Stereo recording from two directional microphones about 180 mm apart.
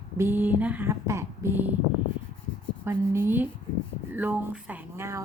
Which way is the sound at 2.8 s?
15° right (ahead or behind).